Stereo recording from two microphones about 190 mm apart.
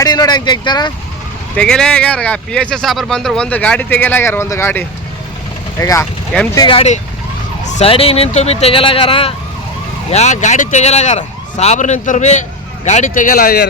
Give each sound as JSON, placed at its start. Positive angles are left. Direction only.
{"t": 0.0, "sound": "speech", "side_deg": 20}
{"t": 1.5, "sound": "speech", "side_deg": 5}
{"t": 6.3, "sound": "speech", "side_deg": 5}
{"t": 6.6, "sound": "a man's voice", "side_deg": 30}